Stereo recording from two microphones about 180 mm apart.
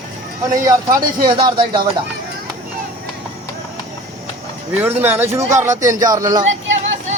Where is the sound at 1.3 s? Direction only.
20° right (ahead or behind).